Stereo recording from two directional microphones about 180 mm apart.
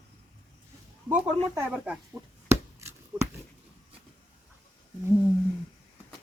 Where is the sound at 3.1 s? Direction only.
10° right (ahead or behind).